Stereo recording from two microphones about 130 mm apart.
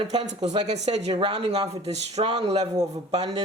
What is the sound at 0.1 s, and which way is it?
Speech, 55° right (ahead or behind).